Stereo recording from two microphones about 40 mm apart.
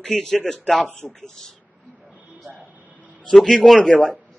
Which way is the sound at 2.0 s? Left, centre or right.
Right.